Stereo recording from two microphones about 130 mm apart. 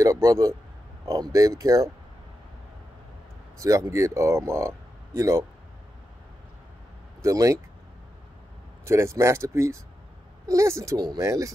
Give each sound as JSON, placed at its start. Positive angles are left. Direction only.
{"t": 0.0, "sound": "speech", "side_deg": -25}
{"t": 3.5, "sound": "speech", "side_deg": -25}
{"t": 7.2, "sound": "speech", "side_deg": -25}
{"t": 8.8, "sound": "speech", "side_deg": -20}